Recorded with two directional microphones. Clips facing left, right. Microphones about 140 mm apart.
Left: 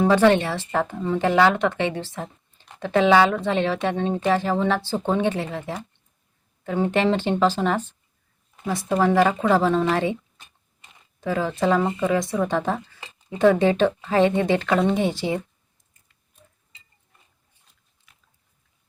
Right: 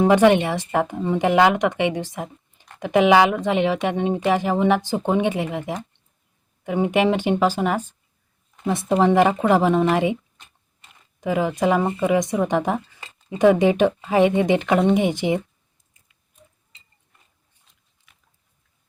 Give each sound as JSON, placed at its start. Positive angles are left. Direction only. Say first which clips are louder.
{"t": 0.0, "sound": "a woman's voice", "louder": "right 2 dB", "side_deg": -15}
{"t": 8.9, "sound": "a woman's voice", "louder": "right 2 dB", "side_deg": -20}
{"t": 11.2, "sound": "a woman's voice", "louder": "right 2 dB", "side_deg": -15}
{"t": 18.1, "sound": "biting", "louder": "even", "side_deg": 0}